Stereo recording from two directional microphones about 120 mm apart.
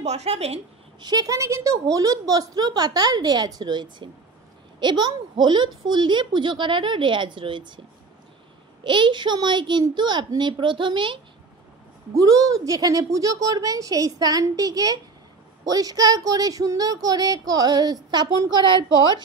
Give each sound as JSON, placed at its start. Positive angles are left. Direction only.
{"t": 0.0, "sound": "a woman's voice", "side_deg": -65}
{"t": 1.0, "sound": "speech", "side_deg": -30}
{"t": 8.8, "sound": "speech", "side_deg": -40}
{"t": 12.1, "sound": "a woman's voice", "side_deg": -30}